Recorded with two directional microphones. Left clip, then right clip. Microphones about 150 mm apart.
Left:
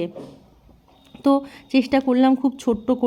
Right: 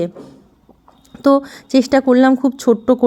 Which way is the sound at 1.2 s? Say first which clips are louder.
Right 6 dB; 25° right (ahead or behind).